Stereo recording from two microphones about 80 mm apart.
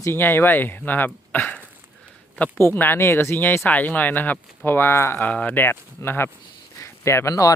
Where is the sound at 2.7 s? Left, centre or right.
Left.